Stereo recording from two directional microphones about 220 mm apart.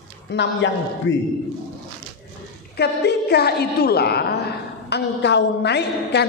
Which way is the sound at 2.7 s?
50° left (ahead or behind).